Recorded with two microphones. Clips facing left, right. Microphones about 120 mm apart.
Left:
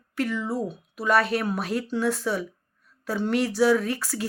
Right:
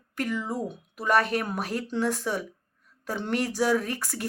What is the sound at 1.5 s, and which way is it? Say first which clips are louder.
Speech: left 3 dB; 45° right (ahead or behind).